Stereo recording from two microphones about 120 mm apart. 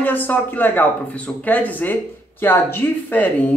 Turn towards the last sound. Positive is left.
turn(degrees=15)  # may be behind; listen again after turning